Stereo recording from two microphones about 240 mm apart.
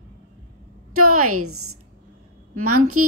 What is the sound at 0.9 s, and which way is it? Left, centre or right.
A woman's voice, right.